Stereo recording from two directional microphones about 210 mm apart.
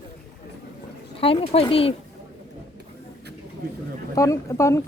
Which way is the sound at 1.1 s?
25° left (ahead or behind).